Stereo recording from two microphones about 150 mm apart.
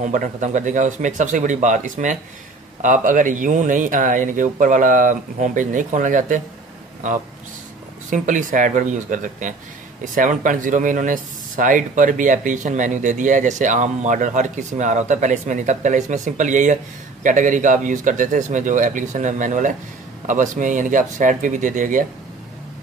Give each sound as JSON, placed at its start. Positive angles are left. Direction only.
{"t": 0.0, "sound": "speech", "side_deg": -55}
{"t": 8.1, "sound": "speech", "side_deg": -60}